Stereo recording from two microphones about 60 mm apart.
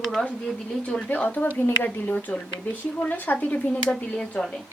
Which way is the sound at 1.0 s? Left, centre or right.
Left.